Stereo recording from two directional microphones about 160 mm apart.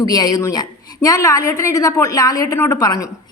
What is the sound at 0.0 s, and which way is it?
A woman's voice, 25° left (ahead or behind).